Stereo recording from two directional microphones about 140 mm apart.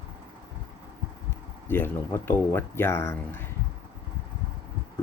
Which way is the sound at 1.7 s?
15° left (ahead or behind).